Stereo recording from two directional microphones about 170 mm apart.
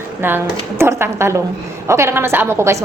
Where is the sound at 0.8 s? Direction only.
15° right (ahead or behind).